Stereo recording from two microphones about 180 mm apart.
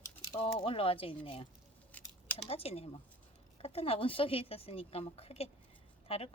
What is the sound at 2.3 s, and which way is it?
Speech, 35° left (ahead or behind).